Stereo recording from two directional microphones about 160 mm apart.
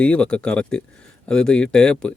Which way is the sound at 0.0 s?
5° left (ahead or behind).